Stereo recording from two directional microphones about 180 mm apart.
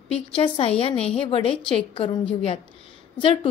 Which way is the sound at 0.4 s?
30° left (ahead or behind).